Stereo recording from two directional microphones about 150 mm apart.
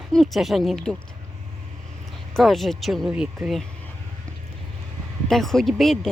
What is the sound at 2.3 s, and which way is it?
Speech, centre (ahead or behind).